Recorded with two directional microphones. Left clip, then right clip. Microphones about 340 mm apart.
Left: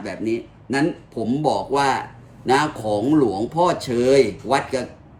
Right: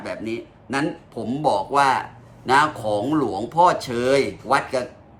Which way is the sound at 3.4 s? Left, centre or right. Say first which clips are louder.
Right 2 dB; centre.